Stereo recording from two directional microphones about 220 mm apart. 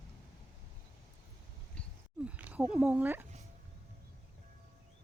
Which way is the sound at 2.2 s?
5° right (ahead or behind).